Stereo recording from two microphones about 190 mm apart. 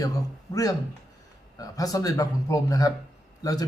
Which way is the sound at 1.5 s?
20° left (ahead or behind).